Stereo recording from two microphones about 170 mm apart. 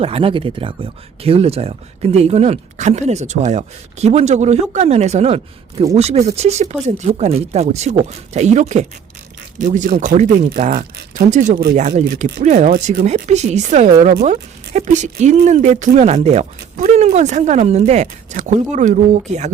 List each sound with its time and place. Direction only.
0.0 s speech: 35° right (ahead or behind)
12.7 s speech: 55° right (ahead or behind)
13.1 s speech: 45° right (ahead or behind)